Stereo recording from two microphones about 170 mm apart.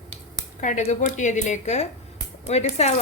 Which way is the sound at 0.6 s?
45° left (ahead or behind).